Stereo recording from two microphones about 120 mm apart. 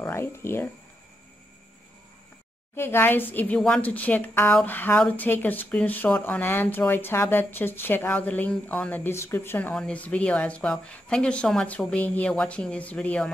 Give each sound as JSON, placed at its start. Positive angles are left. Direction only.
{"t": 0.1, "sound": "speech", "side_deg": 20}
{"t": 2.7, "sound": "speech", "side_deg": 20}